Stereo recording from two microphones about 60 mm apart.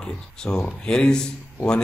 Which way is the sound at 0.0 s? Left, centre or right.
Centre.